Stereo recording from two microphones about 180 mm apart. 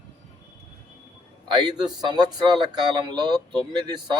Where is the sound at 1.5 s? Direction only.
25° right (ahead or behind).